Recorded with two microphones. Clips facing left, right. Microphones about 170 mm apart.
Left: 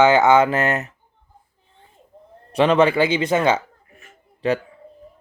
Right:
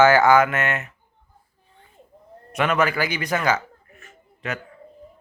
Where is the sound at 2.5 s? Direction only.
30° left (ahead or behind).